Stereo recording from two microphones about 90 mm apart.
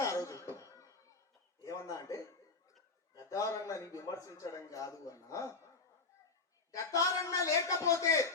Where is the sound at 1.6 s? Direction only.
35° left (ahead or behind).